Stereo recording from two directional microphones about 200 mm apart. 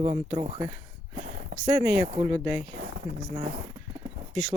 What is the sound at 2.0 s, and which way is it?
Speech, 25° right (ahead or behind).